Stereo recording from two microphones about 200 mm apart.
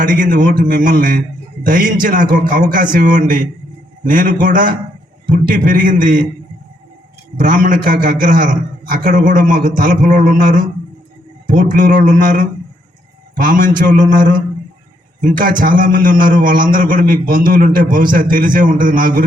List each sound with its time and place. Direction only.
0.0 s a man's voice: 40° right (ahead or behind)
7.3 s a man's voice: 45° right (ahead or behind)